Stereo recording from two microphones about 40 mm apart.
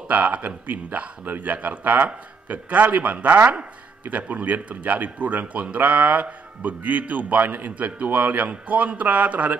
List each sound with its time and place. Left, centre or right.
0.1 s speech: right